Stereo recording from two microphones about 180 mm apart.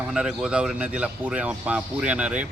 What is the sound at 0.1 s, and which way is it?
Speech, 5° right (ahead or behind).